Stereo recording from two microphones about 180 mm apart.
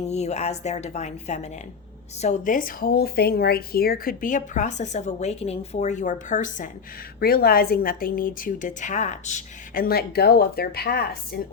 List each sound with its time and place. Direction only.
0.0 s a woman's voice: 35° left (ahead or behind)
7.2 s a woman's voice: 55° left (ahead or behind)